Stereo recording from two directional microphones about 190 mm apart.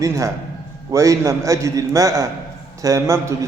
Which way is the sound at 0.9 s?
15° right (ahead or behind).